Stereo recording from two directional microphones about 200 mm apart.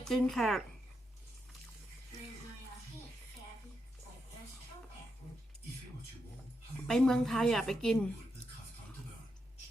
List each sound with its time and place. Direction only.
0.0 s a woman's voice: centre (ahead or behind)
6.8 s a woman's voice: centre (ahead or behind)